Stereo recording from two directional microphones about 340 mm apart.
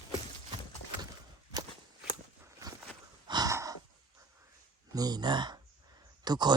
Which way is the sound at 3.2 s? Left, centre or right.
Centre.